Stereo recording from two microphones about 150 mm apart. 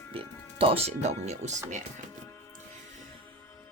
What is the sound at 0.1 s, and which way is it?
Speech, 40° right (ahead or behind).